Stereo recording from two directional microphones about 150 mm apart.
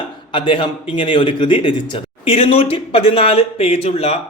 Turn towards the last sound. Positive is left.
turn(degrees=40)  # may be behind; listen again after turning